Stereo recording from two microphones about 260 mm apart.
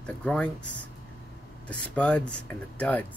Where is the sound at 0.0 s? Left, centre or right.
Centre.